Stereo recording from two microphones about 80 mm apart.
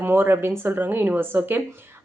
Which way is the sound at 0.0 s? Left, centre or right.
Right.